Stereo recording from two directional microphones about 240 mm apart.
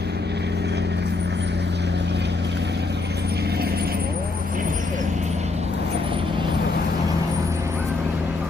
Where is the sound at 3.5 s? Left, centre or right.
Right.